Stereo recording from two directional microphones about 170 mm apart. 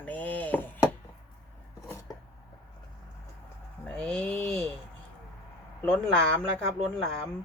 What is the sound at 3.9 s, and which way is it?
Speech, 5° left (ahead or behind).